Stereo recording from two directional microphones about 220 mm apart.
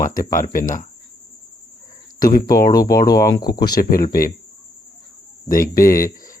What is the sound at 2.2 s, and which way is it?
Speech, 40° left (ahead or behind).